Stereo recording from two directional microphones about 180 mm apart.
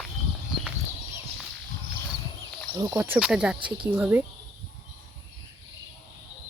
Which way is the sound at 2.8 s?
20° right (ahead or behind).